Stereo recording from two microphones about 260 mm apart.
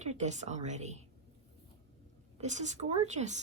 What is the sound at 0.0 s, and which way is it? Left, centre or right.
A woman's voice, right.